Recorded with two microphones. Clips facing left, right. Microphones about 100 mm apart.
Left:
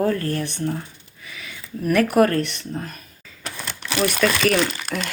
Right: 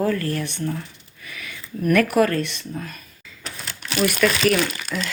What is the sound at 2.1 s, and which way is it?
Speech, 50° left (ahead or behind).